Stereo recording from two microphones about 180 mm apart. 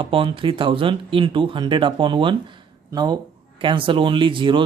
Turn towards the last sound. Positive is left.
turn(degrees=-30)  # may be behind; listen again after turning